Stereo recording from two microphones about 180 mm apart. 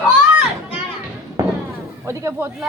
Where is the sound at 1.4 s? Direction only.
20° right (ahead or behind).